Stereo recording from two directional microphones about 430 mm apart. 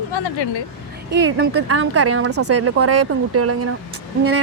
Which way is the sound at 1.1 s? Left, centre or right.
Right.